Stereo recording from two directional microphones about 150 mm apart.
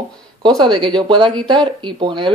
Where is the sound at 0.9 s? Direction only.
30° right (ahead or behind).